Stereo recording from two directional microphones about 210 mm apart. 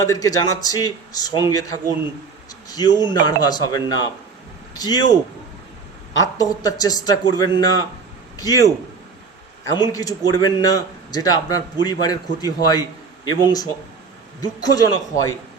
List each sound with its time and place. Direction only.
0.1 s a man's voice: 15° left (ahead or behind)
6.3 s speech: 15° left (ahead or behind)
9.7 s a man's voice: 20° left (ahead or behind)